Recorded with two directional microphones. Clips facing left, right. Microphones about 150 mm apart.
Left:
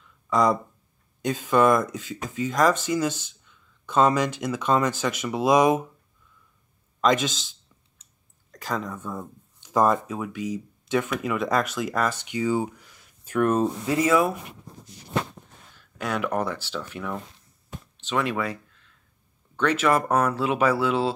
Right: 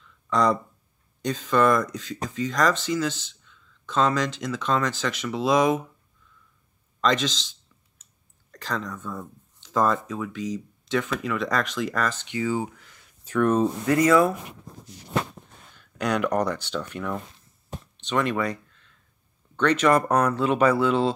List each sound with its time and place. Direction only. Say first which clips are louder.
0.3 s speech: left 1 dB; 5° left (ahead or behind)
7.0 s speech: left 2 dB; 10° left (ahead or behind)
8.5 s speech: left 1 dB; 5° left (ahead or behind)
13.8 s speech: right 3 dB; 20° left (ahead or behind)
16.0 s speech: right 3 dB; 5° left (ahead or behind)